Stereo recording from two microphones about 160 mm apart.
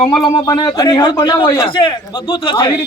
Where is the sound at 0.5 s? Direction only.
25° left (ahead or behind).